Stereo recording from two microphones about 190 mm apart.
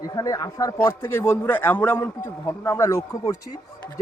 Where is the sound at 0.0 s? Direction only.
20° left (ahead or behind).